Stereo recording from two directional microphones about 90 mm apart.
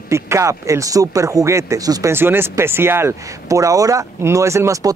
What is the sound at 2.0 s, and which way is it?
Speech, 25° right (ahead or behind).